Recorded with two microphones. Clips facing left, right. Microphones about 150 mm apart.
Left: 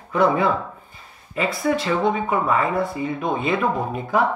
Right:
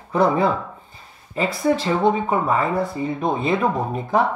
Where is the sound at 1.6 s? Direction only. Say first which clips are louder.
Right 3 dB; 35° right (ahead or behind).